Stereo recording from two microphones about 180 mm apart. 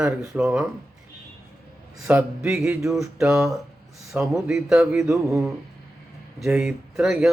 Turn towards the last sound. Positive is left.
turn(degrees=-5)  # may be behind; listen again after turning